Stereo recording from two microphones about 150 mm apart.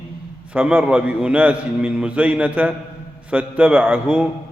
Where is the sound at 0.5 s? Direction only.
10° right (ahead or behind).